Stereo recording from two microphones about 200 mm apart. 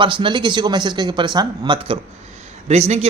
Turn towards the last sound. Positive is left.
turn(degrees=-35)  # may be behind; listen again after turning